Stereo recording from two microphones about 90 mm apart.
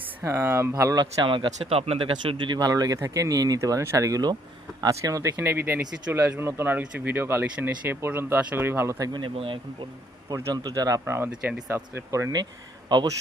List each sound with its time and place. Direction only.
0.2 s speech: 25° right (ahead or behind)
0.9 s speech: 65° right (ahead or behind); by 8.4 s 25° right (ahead or behind)
8.4 s speech: 15° right (ahead or behind)
8.6 s speech: 25° right (ahead or behind)
9.1 s speech: 80° right
10.5 s speech: 45° right (ahead or behind); by 12.3 s 30° right (ahead or behind)